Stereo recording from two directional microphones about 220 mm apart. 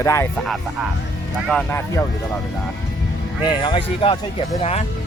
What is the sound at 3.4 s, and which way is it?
Speech, 20° left (ahead or behind).